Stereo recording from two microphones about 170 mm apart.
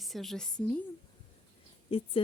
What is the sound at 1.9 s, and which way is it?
Speech, 30° left (ahead or behind).